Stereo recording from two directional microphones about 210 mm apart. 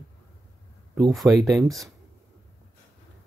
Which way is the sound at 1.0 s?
Centre (ahead or behind).